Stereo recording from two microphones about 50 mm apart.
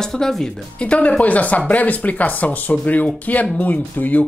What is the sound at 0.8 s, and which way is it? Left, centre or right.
Speech, left.